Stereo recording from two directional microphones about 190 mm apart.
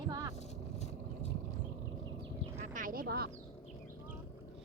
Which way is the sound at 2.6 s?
45° right (ahead or behind).